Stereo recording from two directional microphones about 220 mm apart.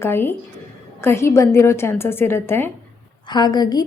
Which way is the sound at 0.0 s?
10° left (ahead or behind).